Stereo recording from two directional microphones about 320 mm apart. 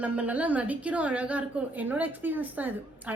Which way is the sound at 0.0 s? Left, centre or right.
Centre.